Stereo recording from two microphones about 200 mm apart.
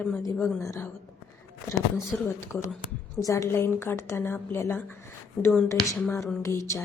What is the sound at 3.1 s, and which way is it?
A woman's voice, 15° left (ahead or behind).